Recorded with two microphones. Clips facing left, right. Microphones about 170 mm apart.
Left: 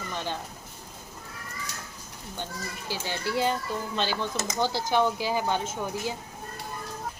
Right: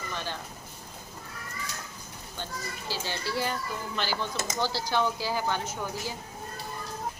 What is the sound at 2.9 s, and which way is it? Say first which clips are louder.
A child's voice: left 3 dB; 15° left (ahead or behind).